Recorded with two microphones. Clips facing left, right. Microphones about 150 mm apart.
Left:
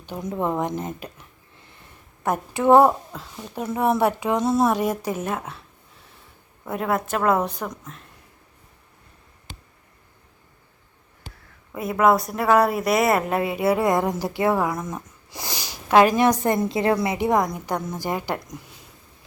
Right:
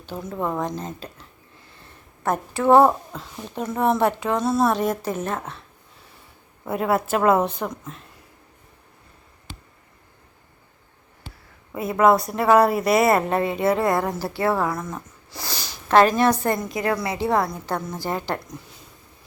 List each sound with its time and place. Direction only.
0.0 s a woman's voice: 15° left (ahead or behind)
0.8 s a sound: 15° left (ahead or behind)
2.2 s speech: 15° left (ahead or behind)
6.7 s a woman's voice: 5° right (ahead or behind)
11.7 s speech: centre (ahead or behind)